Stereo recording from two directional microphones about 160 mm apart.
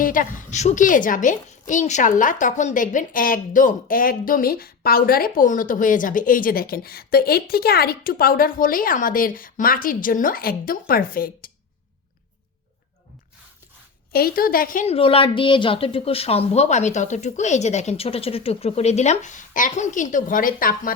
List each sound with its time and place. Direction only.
0.0 s a woman's voice: 60° left (ahead or behind)
14.1 s a woman's voice: 70° left (ahead or behind)
14.8 s a woman's voice: 35° left (ahead or behind); by 20.9 s 60° left (ahead or behind)